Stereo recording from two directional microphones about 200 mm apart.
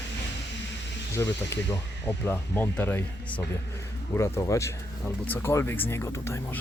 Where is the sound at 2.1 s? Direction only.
10° left (ahead or behind).